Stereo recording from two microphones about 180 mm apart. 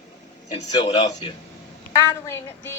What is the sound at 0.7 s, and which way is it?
Speech, 20° left (ahead or behind).